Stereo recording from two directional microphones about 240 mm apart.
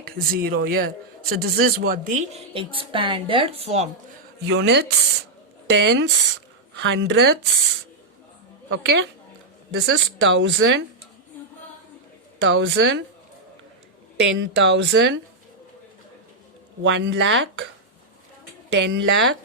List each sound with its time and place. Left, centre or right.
0.0 s a man's voice: right
4.4 s speech: right
8.7 s speech: right
12.4 s speech: right
14.2 s speech: right
16.8 s speech: right
18.7 s speech: right